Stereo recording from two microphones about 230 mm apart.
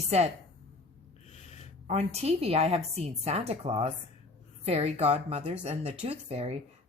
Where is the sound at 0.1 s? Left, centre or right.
Right.